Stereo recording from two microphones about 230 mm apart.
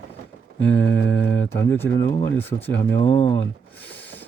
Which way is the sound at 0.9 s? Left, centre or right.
Centre.